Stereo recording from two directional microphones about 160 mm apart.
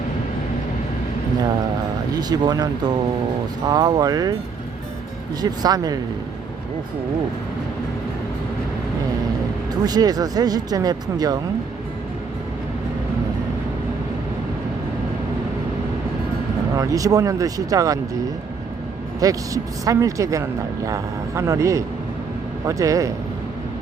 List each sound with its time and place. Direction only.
2.1 s speech: 25° right (ahead or behind)
3.7 s speech: 20° right (ahead or behind)
5.4 s speech: 25° right (ahead or behind)
9.8 s speech: 25° right (ahead or behind)
16.7 s speech: 20° right (ahead or behind)
19.2 s speech: 20° right (ahead or behind)